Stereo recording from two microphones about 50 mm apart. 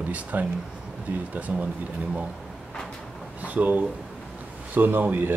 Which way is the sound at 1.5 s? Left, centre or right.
Right.